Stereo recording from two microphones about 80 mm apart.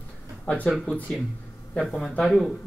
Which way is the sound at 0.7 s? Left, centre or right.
Centre.